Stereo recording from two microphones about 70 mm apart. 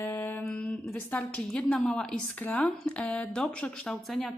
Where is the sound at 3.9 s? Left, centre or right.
Centre.